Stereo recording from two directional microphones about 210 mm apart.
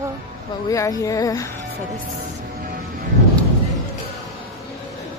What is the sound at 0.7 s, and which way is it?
Speech, 15° left (ahead or behind).